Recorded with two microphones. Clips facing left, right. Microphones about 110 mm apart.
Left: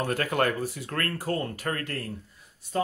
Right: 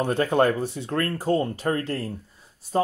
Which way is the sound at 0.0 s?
25° right (ahead or behind).